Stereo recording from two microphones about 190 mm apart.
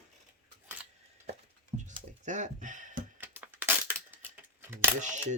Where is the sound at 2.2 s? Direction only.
40° right (ahead or behind).